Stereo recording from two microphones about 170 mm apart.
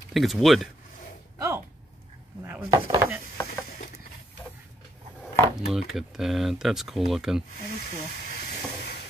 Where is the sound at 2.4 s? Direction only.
10° right (ahead or behind).